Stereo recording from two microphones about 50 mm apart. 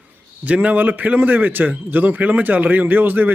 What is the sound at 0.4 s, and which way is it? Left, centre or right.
A man's voice, right.